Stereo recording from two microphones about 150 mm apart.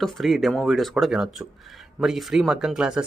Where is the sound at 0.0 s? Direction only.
Centre (ahead or behind).